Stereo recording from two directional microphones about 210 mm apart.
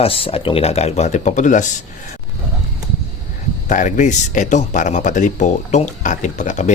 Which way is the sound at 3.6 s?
35° left (ahead or behind).